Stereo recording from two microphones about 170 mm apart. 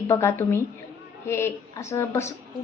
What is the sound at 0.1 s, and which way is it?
A woman's voice, 15° left (ahead or behind).